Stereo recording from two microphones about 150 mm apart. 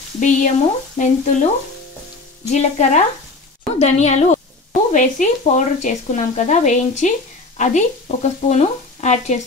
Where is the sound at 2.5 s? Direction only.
50° left (ahead or behind).